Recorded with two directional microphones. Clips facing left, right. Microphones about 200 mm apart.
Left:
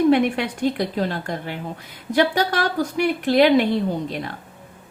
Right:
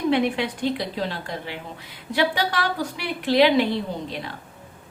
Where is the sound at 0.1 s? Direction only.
45° left (ahead or behind).